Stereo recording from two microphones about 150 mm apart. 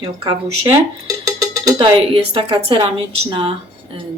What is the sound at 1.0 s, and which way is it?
Cowbell, 20° right (ahead or behind).